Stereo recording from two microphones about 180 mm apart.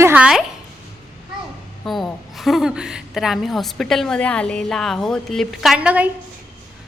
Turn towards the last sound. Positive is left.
turn(degrees=-5)  # may be behind; listen again after turning